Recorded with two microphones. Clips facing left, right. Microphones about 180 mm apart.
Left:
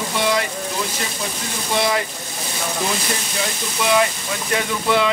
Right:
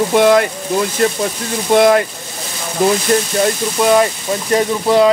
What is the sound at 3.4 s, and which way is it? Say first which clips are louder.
Speech: right 10 dB; 45° right (ahead or behind).